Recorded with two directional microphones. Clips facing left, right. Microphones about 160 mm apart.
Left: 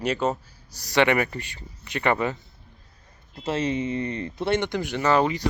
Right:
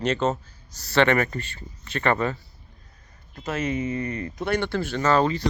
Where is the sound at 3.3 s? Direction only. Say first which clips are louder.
Left 1 dB; 30° left (ahead or behind).